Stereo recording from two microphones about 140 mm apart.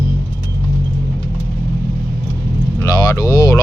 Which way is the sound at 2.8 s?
25° left (ahead or behind).